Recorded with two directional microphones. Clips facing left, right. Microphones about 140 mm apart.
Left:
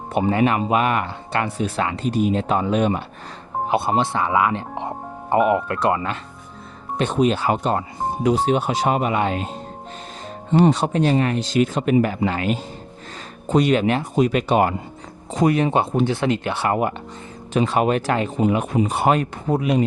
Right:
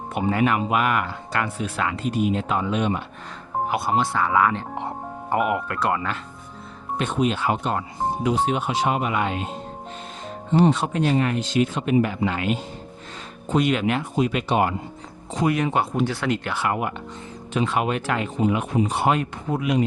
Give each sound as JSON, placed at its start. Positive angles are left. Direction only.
{"t": 0.1, "sound": "speech", "side_deg": 25}
{"t": 3.7, "sound": "speech", "side_deg": 25}
{"t": 7.0, "sound": "speech", "side_deg": 35}
{"t": 10.5, "sound": "speech", "side_deg": 70}
{"t": 10.8, "sound": "speech", "side_deg": 35}
{"t": 15.4, "sound": "speech", "side_deg": 35}
{"t": 16.6, "sound": "speech", "side_deg": 40}